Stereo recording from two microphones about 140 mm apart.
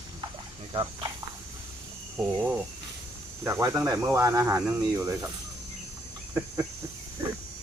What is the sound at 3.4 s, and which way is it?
Speech, 20° right (ahead or behind).